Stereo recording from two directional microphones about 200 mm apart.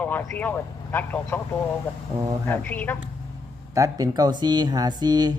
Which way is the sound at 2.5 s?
10° left (ahead or behind).